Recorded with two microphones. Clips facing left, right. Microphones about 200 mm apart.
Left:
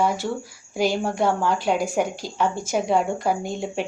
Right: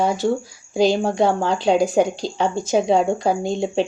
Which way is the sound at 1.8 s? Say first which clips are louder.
Right 6 dB; 20° right (ahead or behind).